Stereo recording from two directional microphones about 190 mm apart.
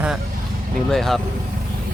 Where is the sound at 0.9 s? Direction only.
Centre (ahead or behind).